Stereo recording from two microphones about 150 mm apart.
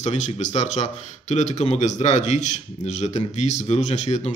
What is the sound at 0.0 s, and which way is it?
Speech, 50° left (ahead or behind).